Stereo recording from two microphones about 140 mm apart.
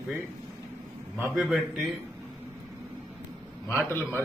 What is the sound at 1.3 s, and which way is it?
Speech, centre (ahead or behind).